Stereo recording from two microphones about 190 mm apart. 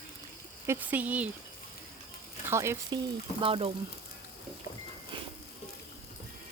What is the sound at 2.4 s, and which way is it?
Speech, 15° right (ahead or behind).